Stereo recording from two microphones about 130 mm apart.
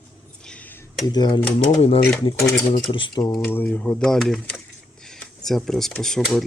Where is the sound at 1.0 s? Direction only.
35° left (ahead or behind).